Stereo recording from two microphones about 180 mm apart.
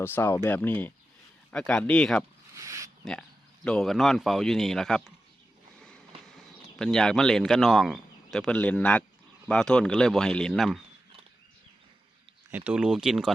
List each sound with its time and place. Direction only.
0.0 s speech: 15° left (ahead or behind)
2.6 s a sound: 15° right (ahead or behind)
3.0 s speech: 5° left (ahead or behind)
12.5 s speech: 10° right (ahead or behind)